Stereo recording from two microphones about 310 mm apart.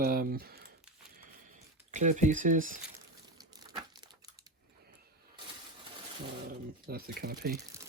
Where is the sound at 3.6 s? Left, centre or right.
Centre.